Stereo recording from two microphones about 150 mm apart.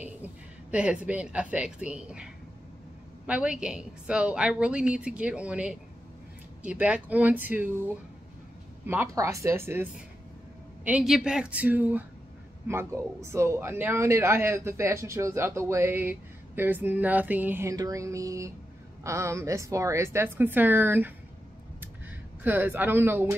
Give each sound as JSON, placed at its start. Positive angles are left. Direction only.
{"t": 0.0, "sound": "speech", "side_deg": -10}
{"t": 22.4, "sound": "speech", "side_deg": -15}